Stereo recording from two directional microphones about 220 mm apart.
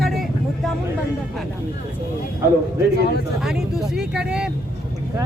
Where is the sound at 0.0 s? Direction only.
Centre (ahead or behind).